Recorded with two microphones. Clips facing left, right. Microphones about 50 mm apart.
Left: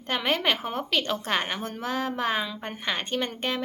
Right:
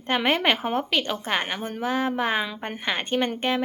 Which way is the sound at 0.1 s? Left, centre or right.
Right.